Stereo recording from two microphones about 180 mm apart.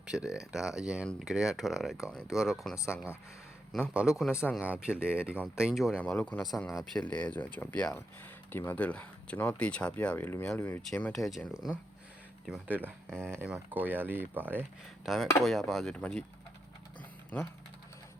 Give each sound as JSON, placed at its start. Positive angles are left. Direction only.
{"t": 0.0, "sound": "a sound", "side_deg": -5}
{"t": 0.8, "sound": "speech", "side_deg": -5}
{"t": 2.7, "sound": "speech", "side_deg": 15}
{"t": 3.7, "sound": "speech", "side_deg": 0}
{"t": 13.1, "sound": "speech", "side_deg": 5}
{"t": 13.3, "sound": "speech", "side_deg": -10}
{"t": 14.6, "sound": "speech", "side_deg": 0}